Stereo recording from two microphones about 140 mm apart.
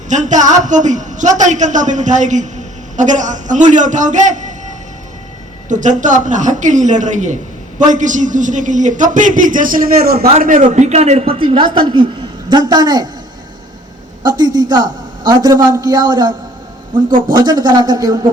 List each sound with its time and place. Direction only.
0.1 s a man's voice: 60° right (ahead or behind)
5.6 s a man's voice: 60° right (ahead or behind); by 10.2 s 90° right
10.4 s a woman's voice: 70° right (ahead or behind); by 13.1 s 30° right (ahead or behind)
14.3 s a man's voice: 30° right (ahead or behind)
17.3 s a man's voice: 25° right (ahead or behind)